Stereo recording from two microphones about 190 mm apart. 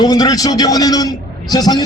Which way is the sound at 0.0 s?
20° left (ahead or behind).